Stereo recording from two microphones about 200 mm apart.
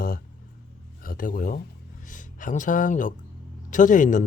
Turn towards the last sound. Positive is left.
turn(degrees=40)  # may be behind; listen again after turning